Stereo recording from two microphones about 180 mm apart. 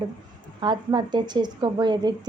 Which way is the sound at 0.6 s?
25° right (ahead or behind).